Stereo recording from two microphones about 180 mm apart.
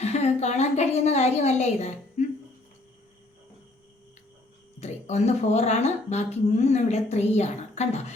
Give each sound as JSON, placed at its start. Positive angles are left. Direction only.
{"t": 0.0, "sound": "a woman's voice", "side_deg": 35}
{"t": 4.8, "sound": "speech", "side_deg": 40}